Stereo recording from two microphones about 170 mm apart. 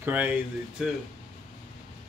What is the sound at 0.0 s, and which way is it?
Speech, 10° right (ahead or behind).